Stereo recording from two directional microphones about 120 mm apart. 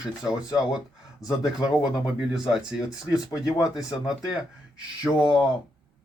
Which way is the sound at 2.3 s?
5° right (ahead or behind).